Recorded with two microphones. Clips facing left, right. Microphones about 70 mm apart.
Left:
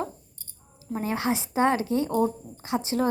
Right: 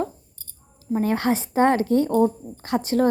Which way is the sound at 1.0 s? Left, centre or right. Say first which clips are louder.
Right 4 dB; right.